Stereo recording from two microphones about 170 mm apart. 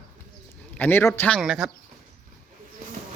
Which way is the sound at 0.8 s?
10° left (ahead or behind).